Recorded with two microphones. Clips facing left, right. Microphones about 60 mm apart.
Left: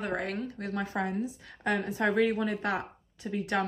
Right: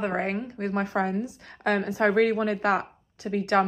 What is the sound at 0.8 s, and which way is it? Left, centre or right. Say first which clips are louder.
A woman's voice: right 3 dB; right.